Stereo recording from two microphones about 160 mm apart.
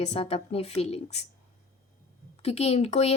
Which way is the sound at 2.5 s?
40° left (ahead or behind).